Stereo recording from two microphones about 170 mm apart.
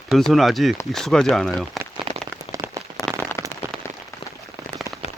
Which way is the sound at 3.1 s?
10° left (ahead or behind).